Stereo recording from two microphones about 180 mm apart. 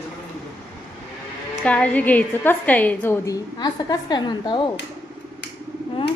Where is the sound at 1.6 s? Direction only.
5° left (ahead or behind).